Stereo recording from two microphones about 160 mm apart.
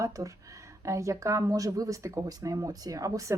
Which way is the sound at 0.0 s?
20° right (ahead or behind).